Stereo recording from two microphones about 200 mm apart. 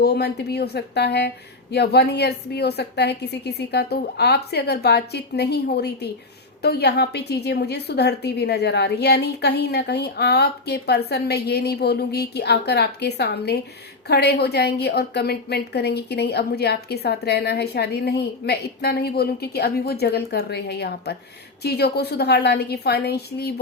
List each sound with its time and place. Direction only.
0.0 s a woman's voice: 55° left (ahead or behind)